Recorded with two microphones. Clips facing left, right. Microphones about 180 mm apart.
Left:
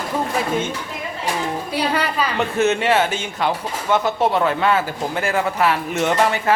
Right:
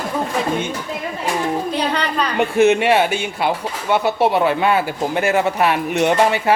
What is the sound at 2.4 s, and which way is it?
Speech, 15° right (ahead or behind).